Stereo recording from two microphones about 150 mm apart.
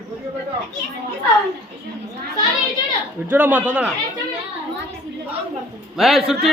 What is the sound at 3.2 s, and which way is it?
Speech, 10° right (ahead or behind).